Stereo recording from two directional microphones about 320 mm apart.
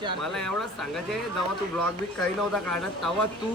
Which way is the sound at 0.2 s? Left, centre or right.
Centre.